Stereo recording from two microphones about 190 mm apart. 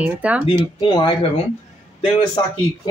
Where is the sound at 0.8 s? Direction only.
20° left (ahead or behind).